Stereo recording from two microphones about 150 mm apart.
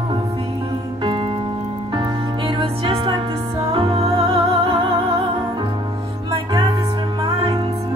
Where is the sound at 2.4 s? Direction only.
35° right (ahead or behind).